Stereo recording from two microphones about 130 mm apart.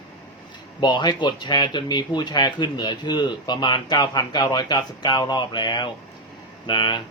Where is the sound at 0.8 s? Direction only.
35° left (ahead or behind).